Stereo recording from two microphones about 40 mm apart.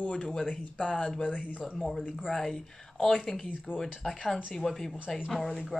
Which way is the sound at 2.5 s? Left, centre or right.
Centre.